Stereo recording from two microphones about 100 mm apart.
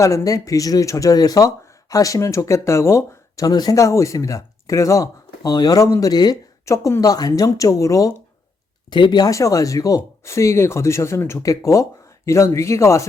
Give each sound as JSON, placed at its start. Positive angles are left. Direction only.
{"t": 0.0, "sound": "speech", "side_deg": 30}
{"t": 6.3, "sound": "speech", "side_deg": 30}
{"t": 8.9, "sound": "speech", "side_deg": 50}